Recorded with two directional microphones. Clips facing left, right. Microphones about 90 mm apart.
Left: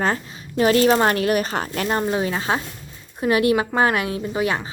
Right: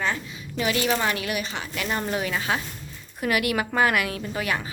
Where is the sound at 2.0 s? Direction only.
30° left (ahead or behind).